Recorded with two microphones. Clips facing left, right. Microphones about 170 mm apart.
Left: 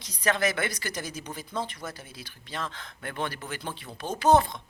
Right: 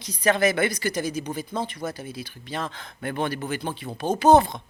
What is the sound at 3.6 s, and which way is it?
Speech, 35° right (ahead or behind).